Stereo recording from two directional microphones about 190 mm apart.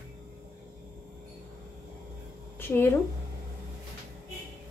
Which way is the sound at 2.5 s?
10° left (ahead or behind).